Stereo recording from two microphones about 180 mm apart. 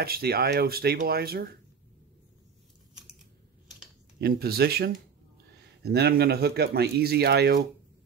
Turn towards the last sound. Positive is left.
turn(degrees=-65)  # may be behind; listen again after turning